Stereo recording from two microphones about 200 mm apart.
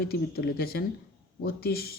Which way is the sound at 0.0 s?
50° left (ahead or behind).